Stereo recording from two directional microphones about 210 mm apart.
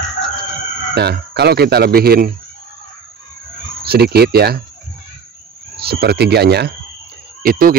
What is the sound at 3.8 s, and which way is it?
Speech, 50° right (ahead or behind).